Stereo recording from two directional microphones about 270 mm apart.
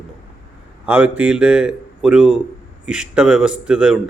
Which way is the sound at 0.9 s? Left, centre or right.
Centre.